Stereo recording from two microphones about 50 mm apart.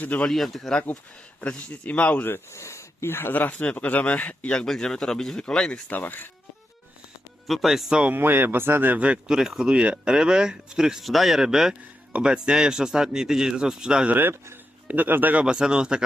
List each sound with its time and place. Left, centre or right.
0.3 s speech: centre
1.4 s speech: left
2.5 s a sound: left
3.1 s speech: left
3.3 s speech: left
4.6 s speech: centre
5.9 s speech: left
7.4 s speech: centre
8.1 s speech: right
9.2 s speech: centre
9.7 s speech: right
14.1 s speech: right
15.4 s speech: centre